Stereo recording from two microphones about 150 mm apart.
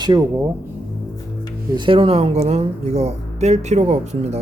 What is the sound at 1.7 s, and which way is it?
Speech, 35° right (ahead or behind).